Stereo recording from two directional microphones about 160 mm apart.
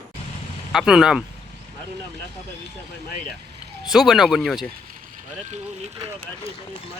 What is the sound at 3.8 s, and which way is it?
Speech, centre (ahead or behind).